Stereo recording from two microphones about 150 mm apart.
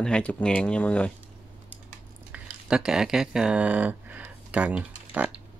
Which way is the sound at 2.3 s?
5° right (ahead or behind).